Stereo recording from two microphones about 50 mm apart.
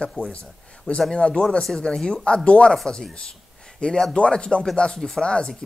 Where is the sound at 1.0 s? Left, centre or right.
Centre.